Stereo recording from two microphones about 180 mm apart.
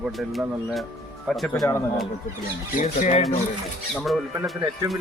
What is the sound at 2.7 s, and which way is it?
Speech, 45° left (ahead or behind).